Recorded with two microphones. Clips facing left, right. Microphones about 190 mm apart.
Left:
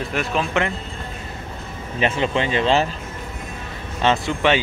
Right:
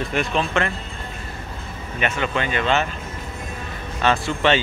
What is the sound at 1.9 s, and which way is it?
Speech, 30° left (ahead or behind).